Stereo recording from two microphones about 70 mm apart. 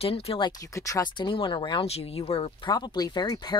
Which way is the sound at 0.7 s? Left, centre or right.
Left.